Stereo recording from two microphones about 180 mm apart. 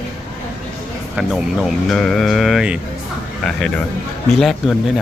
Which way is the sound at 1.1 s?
5° right (ahead or behind).